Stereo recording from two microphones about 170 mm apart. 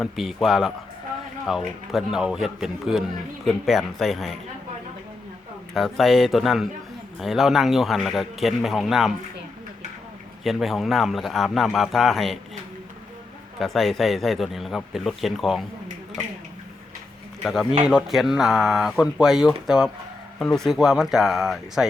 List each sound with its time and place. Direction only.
0.0 s speech: centre (ahead or behind)
5.7 s speech: centre (ahead or behind)
10.4 s speech: centre (ahead or behind)
13.6 s speech: centre (ahead or behind)
17.4 s speech: centre (ahead or behind)